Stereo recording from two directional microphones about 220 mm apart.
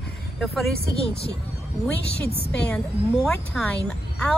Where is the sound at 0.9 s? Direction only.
25° left (ahead or behind).